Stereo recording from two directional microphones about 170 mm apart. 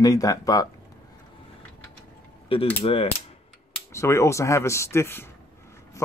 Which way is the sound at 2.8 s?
35° left (ahead or behind).